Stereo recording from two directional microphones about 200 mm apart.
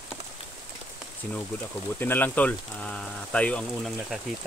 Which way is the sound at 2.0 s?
10° left (ahead or behind).